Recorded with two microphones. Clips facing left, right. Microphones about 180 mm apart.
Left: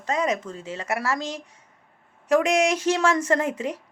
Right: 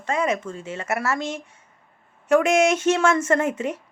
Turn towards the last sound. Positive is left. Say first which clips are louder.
# right 2 dB
turn(degrees=35)  # may be behind; listen again after turning